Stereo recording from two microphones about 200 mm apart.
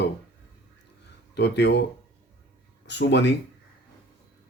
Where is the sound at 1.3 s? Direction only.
60° left (ahead or behind).